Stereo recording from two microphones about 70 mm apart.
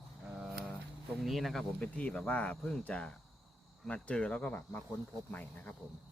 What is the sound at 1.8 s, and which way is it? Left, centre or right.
Speech, left.